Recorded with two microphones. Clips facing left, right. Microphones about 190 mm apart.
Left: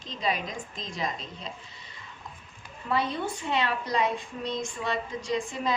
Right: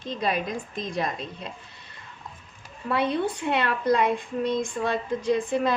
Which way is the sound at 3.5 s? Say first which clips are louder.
Right 5 dB; 55° right (ahead or behind).